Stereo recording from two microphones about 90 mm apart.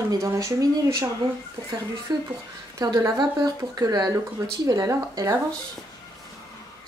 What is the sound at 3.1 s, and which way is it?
Speech, 45° right (ahead or behind).